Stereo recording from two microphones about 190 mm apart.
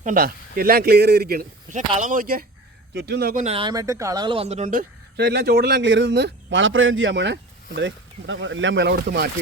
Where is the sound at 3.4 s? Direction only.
30° right (ahead or behind).